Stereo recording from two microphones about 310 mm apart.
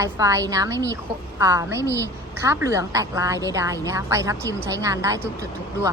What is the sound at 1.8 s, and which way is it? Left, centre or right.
Speech, centre.